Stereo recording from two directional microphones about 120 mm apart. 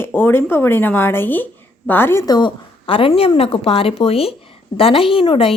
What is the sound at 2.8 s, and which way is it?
A woman's voice, 50° left (ahead or behind).